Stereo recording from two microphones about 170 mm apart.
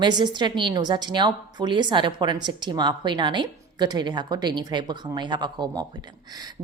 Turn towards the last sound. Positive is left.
turn(degrees=-20)  # may be behind; listen again after turning